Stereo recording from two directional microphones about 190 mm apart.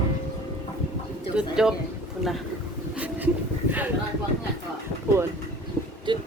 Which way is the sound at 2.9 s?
10° right (ahead or behind).